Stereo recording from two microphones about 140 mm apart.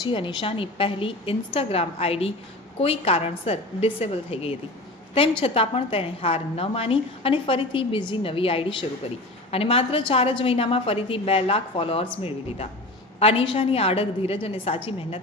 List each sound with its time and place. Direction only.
0.0 s a woman's voice: 35° left (ahead or behind)